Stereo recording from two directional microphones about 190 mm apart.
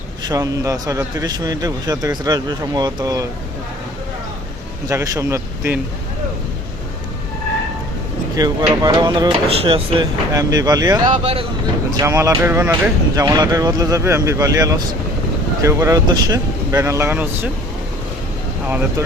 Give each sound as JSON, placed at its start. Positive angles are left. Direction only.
{"t": 0.3, "sound": "speech", "side_deg": -20}
{"t": 4.9, "sound": "speech", "side_deg": -15}
{"t": 8.4, "sound": "speech", "side_deg": -20}
{"t": 11.1, "sound": "speech", "side_deg": -30}
{"t": 11.9, "sound": "speech", "side_deg": -15}
{"t": 18.7, "sound": "speech", "side_deg": -10}